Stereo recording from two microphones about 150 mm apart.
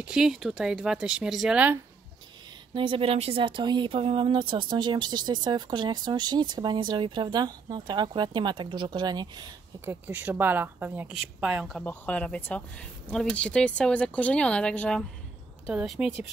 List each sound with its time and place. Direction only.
0.0 s speech: 5° right (ahead or behind)
2.7 s speech: 35° right (ahead or behind)
9.8 s a woman's voice: 10° right (ahead or behind)
11.8 s speech: 10° left (ahead or behind)